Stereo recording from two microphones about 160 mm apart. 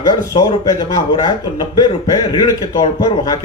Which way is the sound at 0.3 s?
20° left (ahead or behind).